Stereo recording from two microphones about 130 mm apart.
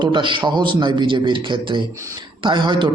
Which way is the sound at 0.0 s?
35° right (ahead or behind).